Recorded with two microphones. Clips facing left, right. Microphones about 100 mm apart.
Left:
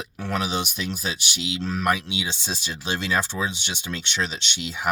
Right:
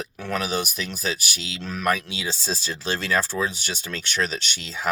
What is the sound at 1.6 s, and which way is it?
Speech, 35° left (ahead or behind).